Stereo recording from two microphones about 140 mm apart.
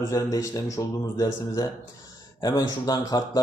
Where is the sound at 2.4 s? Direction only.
25° left (ahead or behind).